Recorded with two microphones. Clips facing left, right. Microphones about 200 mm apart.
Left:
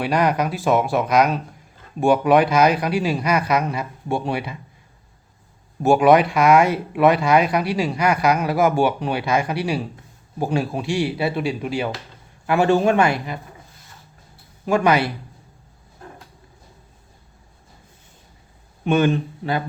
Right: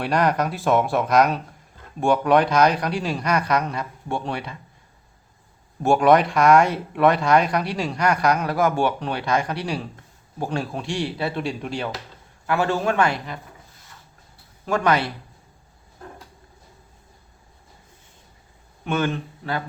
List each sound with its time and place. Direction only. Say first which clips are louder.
0.0 s speech: left 1 dB; centre (ahead or behind)
5.8 s speech: left 2 dB; 5° left (ahead or behind)
12.5 s speech: left 5 dB; 15° left (ahead or behind)
14.7 s speech: left 3 dB; 10° left (ahead or behind)
18.9 s speech: left 6 dB; 15° left (ahead or behind)